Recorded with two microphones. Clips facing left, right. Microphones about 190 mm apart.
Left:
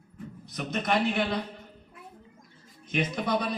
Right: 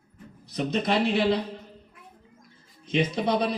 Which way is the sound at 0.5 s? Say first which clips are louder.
Right 3 dB; 30° right (ahead or behind).